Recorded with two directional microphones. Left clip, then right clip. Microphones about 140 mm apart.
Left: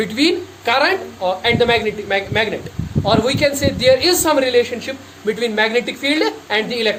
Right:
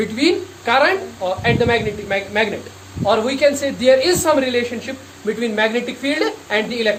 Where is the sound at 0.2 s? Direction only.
60° left (ahead or behind).